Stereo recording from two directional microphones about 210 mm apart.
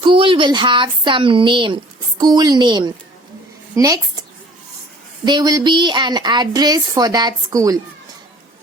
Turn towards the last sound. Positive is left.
turn(degrees=-15)  # may be behind; listen again after turning